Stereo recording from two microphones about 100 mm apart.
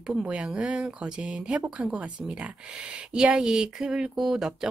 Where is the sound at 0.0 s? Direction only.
10° right (ahead or behind).